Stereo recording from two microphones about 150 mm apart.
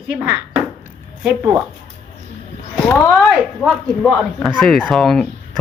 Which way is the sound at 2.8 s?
10° left (ahead or behind).